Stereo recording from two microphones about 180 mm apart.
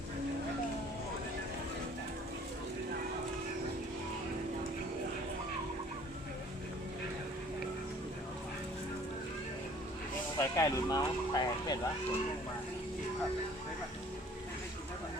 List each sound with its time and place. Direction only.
10.3 s speech: 15° left (ahead or behind)